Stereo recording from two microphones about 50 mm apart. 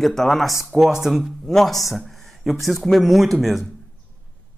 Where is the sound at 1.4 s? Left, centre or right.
Centre.